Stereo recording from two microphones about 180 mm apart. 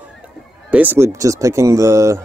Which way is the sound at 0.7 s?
10° right (ahead or behind).